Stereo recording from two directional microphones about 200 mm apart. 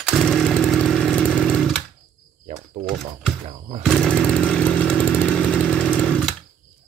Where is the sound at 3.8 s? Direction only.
5° left (ahead or behind).